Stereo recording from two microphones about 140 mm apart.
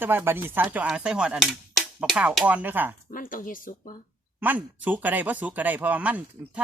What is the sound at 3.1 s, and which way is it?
Speech, 75° left (ahead or behind).